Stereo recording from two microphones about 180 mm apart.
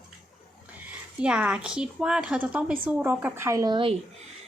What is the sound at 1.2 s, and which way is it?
A woman's voice, 5° right (ahead or behind).